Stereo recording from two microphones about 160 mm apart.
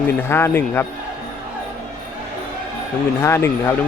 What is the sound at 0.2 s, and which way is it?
Speech, 15° left (ahead or behind).